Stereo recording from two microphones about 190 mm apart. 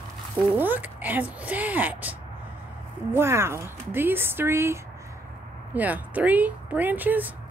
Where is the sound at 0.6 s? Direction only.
10° right (ahead or behind).